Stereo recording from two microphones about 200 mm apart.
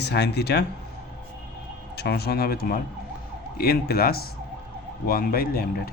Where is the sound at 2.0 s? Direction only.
55° left (ahead or behind).